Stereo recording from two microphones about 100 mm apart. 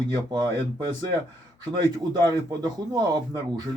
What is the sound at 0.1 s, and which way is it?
Speech, 45° right (ahead or behind).